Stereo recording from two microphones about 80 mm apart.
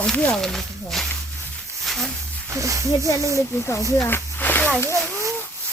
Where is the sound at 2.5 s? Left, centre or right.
Right.